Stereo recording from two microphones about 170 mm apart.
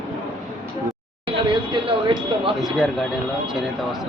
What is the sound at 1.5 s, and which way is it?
Speech, 30° right (ahead or behind).